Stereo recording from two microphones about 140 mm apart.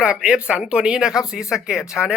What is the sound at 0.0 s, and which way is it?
A man's voice, 5° right (ahead or behind).